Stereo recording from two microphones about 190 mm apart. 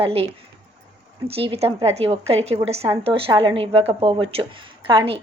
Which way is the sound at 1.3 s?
30° right (ahead or behind).